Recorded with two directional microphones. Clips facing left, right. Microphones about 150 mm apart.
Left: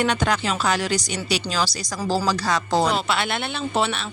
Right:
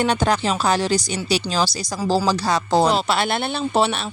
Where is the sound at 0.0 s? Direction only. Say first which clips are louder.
Right 3 dB; 30° right (ahead or behind).